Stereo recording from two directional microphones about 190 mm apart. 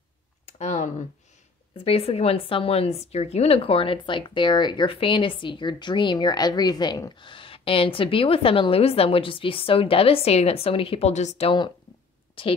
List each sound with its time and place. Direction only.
0.6 s computer keyboard: 35° left (ahead or behind)
1.9 s speech: 30° left (ahead or behind)